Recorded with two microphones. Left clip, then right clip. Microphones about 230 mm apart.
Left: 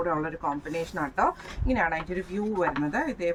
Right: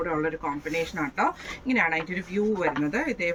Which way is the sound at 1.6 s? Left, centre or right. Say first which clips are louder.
Right 2 dB; centre.